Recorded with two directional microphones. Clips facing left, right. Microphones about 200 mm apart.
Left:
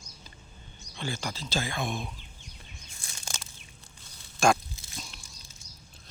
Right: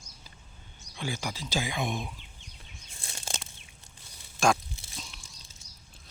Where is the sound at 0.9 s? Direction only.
10° right (ahead or behind).